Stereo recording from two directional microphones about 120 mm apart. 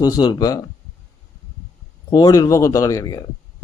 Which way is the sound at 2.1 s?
30° left (ahead or behind).